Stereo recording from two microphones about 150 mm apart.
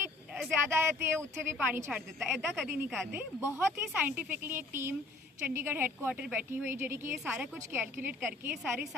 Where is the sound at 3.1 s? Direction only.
10° right (ahead or behind).